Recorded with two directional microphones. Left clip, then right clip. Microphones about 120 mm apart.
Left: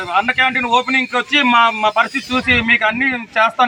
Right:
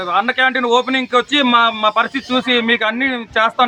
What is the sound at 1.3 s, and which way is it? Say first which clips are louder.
Speech: left 3 dB; 35° right (ahead or behind).